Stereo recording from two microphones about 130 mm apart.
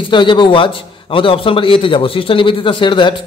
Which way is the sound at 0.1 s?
40° left (ahead or behind).